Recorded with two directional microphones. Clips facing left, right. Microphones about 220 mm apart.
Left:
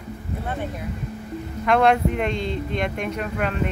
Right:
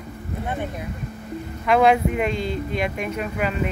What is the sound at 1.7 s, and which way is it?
Speech, 5° right (ahead or behind).